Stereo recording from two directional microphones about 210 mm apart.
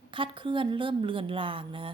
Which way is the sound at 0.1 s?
25° right (ahead or behind).